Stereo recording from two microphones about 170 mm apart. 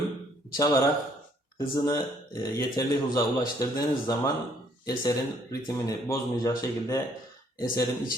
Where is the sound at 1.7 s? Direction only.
25° left (ahead or behind).